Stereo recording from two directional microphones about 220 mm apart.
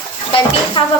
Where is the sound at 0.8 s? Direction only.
20° left (ahead or behind).